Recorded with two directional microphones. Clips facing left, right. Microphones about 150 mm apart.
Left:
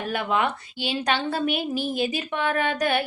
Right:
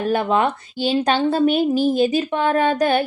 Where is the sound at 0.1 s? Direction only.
35° right (ahead or behind).